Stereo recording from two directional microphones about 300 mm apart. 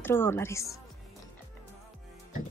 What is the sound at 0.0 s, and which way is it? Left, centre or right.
Speech, centre.